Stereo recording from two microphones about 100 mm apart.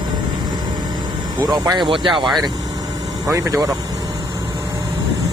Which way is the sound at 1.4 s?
45° right (ahead or behind).